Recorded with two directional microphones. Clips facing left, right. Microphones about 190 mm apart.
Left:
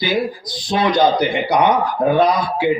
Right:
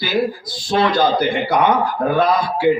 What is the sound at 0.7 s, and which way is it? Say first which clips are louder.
A man's voice: left 1 dB; 20° left (ahead or behind).